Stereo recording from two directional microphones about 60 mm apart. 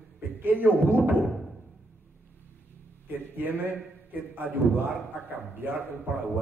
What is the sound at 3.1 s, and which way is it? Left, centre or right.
Speech, right.